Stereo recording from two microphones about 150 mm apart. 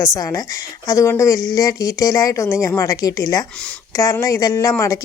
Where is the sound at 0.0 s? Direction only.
20° left (ahead or behind).